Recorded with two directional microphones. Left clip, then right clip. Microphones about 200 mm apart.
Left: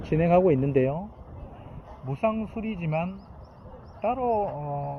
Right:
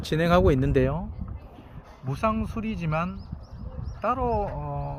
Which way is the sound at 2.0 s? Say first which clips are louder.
Even; 40° right (ahead or behind).